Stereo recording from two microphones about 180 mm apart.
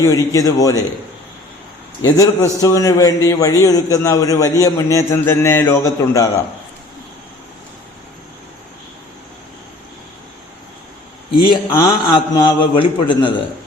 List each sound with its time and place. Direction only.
0.0 s a man's voice: 20° left (ahead or behind)
2.0 s a man's voice: 20° left (ahead or behind)
11.4 s a man's voice: 25° left (ahead or behind)